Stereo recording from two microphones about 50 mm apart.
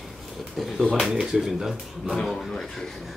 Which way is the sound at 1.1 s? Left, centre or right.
Centre.